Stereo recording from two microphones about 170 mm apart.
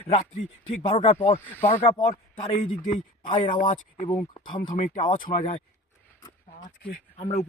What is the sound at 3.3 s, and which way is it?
Speech, 50° left (ahead or behind).